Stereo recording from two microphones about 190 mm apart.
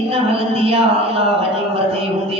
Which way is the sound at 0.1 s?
30° right (ahead or behind).